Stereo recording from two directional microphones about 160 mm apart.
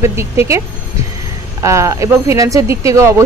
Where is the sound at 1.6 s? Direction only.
20° right (ahead or behind).